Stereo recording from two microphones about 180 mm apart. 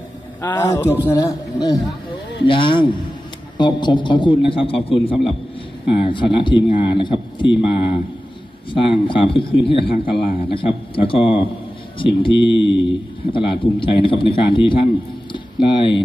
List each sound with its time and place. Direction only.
0.4 s a man's voice: 10° left (ahead or behind); by 4.9 s 30° left (ahead or behind)
4.9 s a man's voice: centre (ahead or behind)
5.9 s speech: 30° left (ahead or behind)